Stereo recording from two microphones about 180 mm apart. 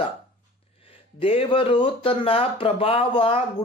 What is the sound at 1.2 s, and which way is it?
A man's voice, 30° left (ahead or behind).